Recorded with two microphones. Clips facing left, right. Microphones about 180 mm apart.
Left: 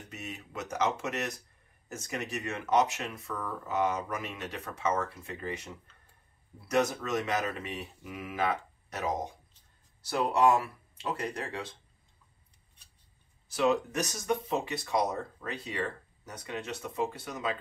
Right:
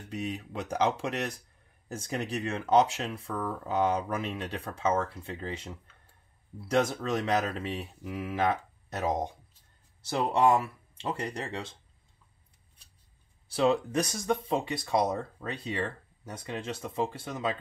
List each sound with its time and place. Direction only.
0.1 s speech: 30° right (ahead or behind)
6.7 s speech: 30° right (ahead or behind)
10.0 s speech: 25° right (ahead or behind)
13.5 s speech: 30° right (ahead or behind)